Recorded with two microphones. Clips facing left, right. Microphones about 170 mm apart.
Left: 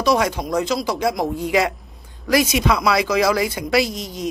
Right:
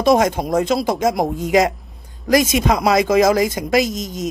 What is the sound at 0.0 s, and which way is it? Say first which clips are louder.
Speech: right 4 dB; 50° right (ahead or behind).